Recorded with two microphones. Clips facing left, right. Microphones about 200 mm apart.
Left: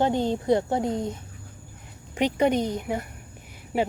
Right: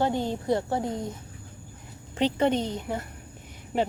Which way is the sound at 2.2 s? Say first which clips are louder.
Left 2 dB; 15° left (ahead or behind).